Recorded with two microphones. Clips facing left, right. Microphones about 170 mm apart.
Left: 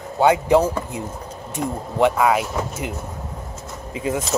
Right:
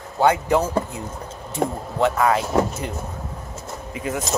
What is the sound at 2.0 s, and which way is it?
Speech, 10° left (ahead or behind).